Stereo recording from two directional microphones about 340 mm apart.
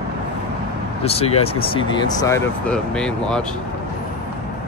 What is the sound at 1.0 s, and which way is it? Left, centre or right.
Speech, centre.